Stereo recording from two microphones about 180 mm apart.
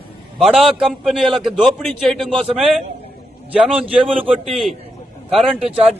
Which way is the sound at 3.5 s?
5° right (ahead or behind).